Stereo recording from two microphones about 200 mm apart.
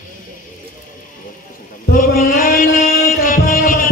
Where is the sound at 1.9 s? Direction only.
45° left (ahead or behind).